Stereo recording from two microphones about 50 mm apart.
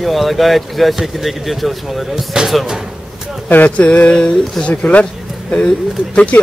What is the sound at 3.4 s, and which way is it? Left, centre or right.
Speech, left.